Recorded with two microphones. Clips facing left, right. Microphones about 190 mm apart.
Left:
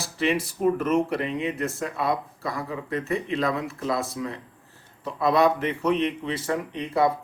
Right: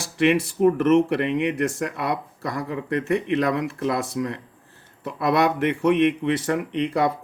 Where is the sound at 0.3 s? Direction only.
60° right (ahead or behind).